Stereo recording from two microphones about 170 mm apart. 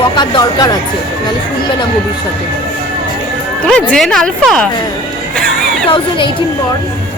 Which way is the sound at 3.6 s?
5° left (ahead or behind).